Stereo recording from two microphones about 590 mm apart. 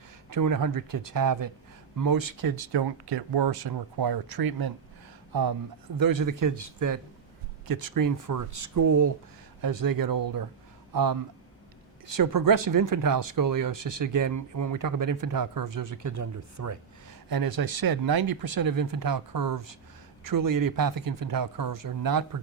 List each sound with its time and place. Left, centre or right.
0.3 s speech: right
6.7 s speech: right
7.7 s speech: right
7.9 s speech: right